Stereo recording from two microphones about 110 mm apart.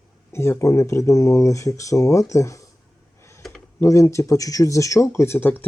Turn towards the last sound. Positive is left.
turn(degrees=20)  # may be behind; listen again after turning